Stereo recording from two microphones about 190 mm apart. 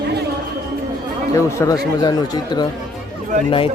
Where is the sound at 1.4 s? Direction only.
15° left (ahead or behind).